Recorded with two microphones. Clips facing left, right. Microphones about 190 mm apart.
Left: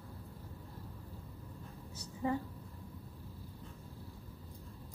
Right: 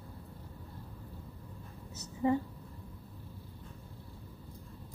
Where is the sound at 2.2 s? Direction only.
20° right (ahead or behind).